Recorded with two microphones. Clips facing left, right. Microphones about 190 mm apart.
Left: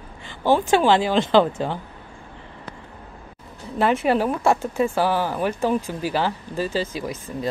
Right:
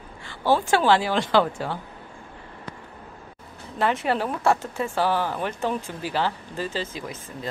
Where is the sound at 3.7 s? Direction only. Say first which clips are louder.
Left 4 dB; 15° left (ahead or behind).